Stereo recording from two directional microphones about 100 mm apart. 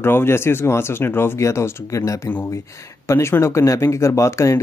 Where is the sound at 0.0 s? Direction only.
25° left (ahead or behind).